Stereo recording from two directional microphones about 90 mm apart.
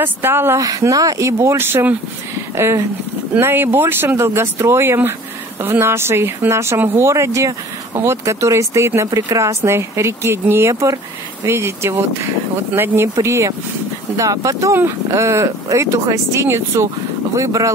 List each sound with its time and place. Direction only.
0.0 s speech: 25° right (ahead or behind)
0.6 s speech: 40° right (ahead or behind)
10.7 s speech: 40° right (ahead or behind)